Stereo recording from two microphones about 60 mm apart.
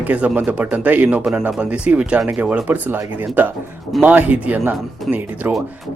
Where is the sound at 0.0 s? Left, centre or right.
Right.